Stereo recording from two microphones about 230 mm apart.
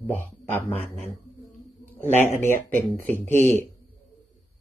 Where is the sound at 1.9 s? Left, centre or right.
Centre.